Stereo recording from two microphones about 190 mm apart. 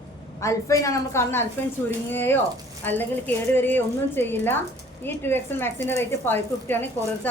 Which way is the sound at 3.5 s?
10° left (ahead or behind).